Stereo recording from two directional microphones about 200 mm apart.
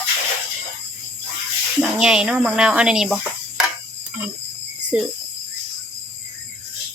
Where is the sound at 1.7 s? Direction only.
5° right (ahead or behind).